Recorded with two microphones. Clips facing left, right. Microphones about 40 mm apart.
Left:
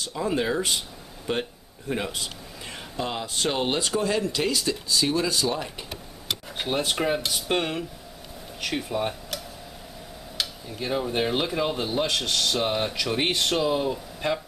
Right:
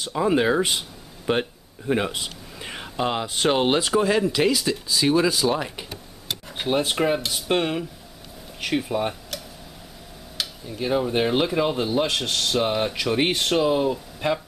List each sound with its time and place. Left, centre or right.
0.0 s speech: right
1.2 s a sound: right
3.5 s speech: right; by 5.0 s centre
5.0 s speech: right
6.5 s speech: centre